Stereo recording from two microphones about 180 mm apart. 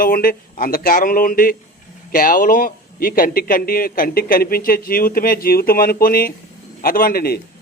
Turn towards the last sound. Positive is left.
turn(degrees=55)  # may be behind; listen again after turning